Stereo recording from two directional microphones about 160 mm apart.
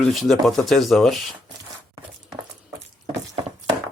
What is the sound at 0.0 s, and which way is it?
Speech, centre (ahead or behind).